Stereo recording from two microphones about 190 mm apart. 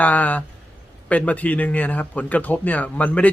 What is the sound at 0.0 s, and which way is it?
Speech, 10° left (ahead or behind).